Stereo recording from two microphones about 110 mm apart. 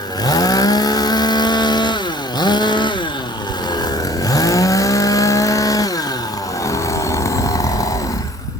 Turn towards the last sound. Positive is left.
turn(degrees=30)  # may be behind; listen again after turning